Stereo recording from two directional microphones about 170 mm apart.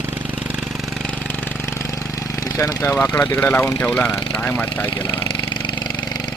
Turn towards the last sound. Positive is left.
turn(degrees=10)  # may be behind; listen again after turning